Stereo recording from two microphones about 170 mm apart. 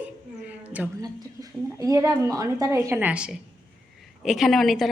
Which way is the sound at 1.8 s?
20° right (ahead or behind).